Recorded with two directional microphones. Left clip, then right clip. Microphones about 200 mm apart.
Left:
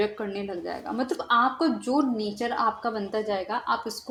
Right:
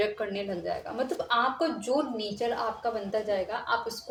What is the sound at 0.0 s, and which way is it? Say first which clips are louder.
Speech: left 1 dB; 30° left (ahead or behind).